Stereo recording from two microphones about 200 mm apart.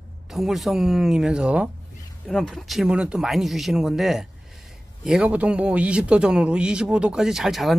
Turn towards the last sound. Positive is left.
turn(degrees=0)  # may be behind; listen again after turning